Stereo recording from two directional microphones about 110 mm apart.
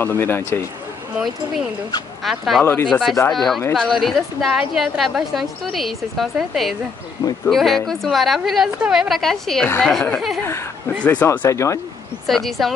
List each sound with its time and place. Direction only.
0.0 s speech: 20° left (ahead or behind)
1.1 s a woman's voice: centre (ahead or behind)
2.6 s speech: 15° left (ahead or behind)
3.3 s a woman's voice: 5° left (ahead or behind)
10.4 s speech: 25° left (ahead or behind)
12.3 s a woman's voice: centre (ahead or behind)